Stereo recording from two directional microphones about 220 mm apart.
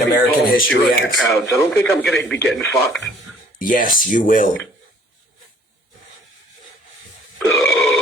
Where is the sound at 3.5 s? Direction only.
40° left (ahead or behind).